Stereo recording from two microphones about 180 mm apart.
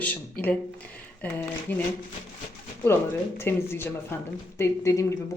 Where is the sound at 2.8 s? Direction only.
15° left (ahead or behind).